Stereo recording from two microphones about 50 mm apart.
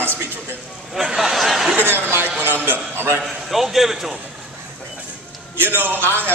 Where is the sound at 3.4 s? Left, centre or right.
Centre.